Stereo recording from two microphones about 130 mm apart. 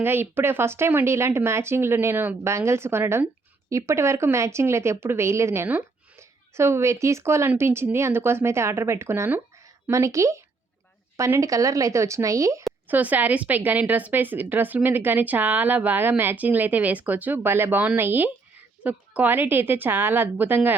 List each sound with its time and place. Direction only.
0.0 s speech: 15° right (ahead or behind)
12.9 s speech: 10° right (ahead or behind)